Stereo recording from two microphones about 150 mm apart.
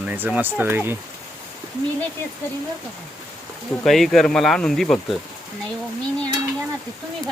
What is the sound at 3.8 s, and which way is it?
Speech, centre (ahead or behind).